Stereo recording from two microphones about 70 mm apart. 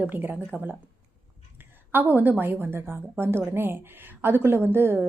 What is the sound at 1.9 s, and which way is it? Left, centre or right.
A woman's voice, right.